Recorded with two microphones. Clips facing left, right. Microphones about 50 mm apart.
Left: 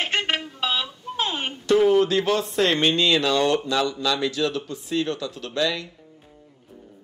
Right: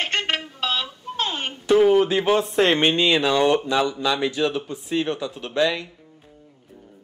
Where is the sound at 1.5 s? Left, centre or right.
Centre.